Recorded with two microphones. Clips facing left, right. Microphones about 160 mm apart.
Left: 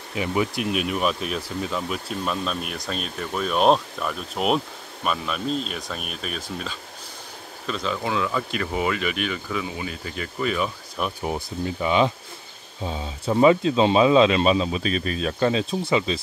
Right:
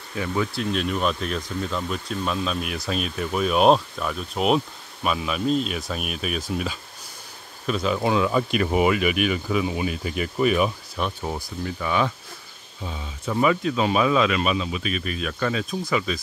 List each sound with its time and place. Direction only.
0.1 s speech: 15° left (ahead or behind); by 10.7 s 15° right (ahead or behind)
11.2 s speech: 20° left (ahead or behind)